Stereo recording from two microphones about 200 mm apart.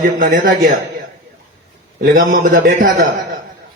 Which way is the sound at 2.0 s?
45° right (ahead or behind).